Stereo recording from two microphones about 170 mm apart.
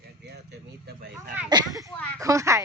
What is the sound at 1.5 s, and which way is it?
Speech, 20° right (ahead or behind).